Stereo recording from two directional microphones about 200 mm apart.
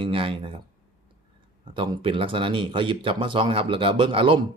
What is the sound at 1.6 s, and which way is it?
Speech, 25° right (ahead or behind).